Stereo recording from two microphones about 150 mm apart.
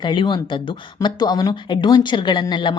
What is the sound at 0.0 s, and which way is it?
Speech, 30° left (ahead or behind).